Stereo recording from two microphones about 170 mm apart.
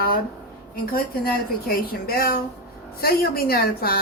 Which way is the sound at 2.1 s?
60° left (ahead or behind).